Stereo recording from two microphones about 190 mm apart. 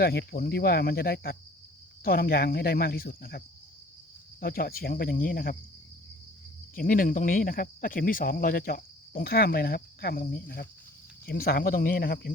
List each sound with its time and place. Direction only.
0.0 s speech: 55° left (ahead or behind)
6.7 s speech: 45° left (ahead or behind)